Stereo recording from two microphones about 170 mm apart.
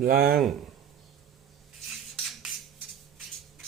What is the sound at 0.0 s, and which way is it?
Speech, 60° right (ahead or behind).